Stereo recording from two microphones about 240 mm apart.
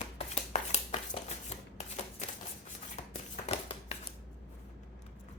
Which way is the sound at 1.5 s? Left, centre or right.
Left.